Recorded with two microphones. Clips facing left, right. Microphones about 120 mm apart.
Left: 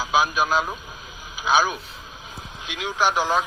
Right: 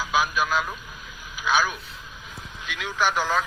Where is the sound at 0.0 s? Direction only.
30° left (ahead or behind).